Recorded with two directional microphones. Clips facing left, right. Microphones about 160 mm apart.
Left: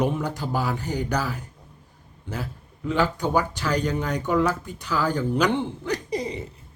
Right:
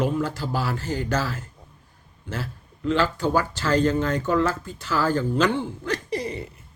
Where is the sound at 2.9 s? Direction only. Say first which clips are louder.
Right 1 dB; 20° left (ahead or behind).